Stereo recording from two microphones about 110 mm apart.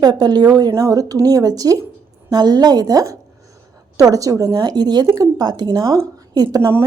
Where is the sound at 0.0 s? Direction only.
40° right (ahead or behind).